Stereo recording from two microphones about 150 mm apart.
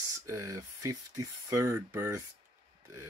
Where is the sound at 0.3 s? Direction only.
20° right (ahead or behind).